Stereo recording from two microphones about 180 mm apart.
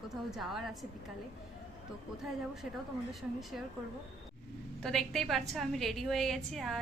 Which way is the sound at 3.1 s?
Centre (ahead or behind).